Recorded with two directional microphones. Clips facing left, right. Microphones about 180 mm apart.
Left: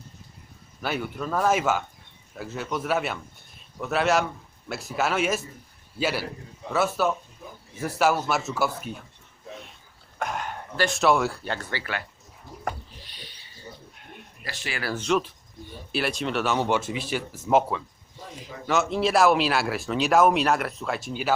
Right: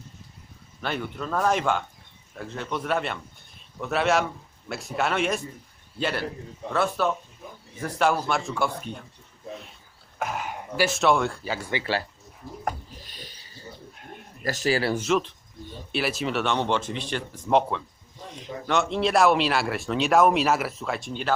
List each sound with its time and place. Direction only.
0.8 s speech: 5° left (ahead or behind)
10.2 s speech: 5° right (ahead or behind)
11.5 s speech: 10° right (ahead or behind)
11.8 s speech: 30° right (ahead or behind)
12.4 s pig: centre (ahead or behind)
13.1 s a sound: 45° right (ahead or behind)
14.4 s speech: 40° right (ahead or behind)
14.9 s speech: 5° right (ahead or behind)
15.2 s a sound: 10° left (ahead or behind)
16.0 s speech: centre (ahead or behind)